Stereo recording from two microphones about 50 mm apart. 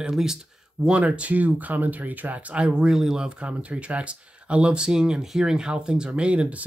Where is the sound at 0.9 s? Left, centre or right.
Right.